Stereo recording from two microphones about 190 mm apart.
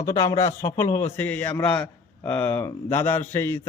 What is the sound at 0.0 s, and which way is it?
A man's voice, 15° left (ahead or behind).